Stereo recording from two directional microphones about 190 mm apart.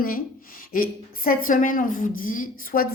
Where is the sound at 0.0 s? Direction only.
50° left (ahead or behind).